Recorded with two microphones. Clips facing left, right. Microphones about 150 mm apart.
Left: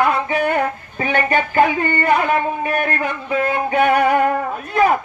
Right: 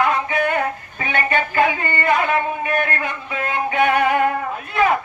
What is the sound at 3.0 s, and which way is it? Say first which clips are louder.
Speech: left 6 dB; 40° left (ahead or behind).